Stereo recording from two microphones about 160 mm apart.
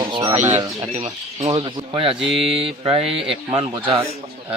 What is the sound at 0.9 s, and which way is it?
Speech, 45° right (ahead or behind).